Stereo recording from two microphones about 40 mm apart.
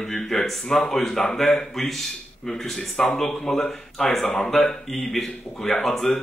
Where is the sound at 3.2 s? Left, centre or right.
Centre.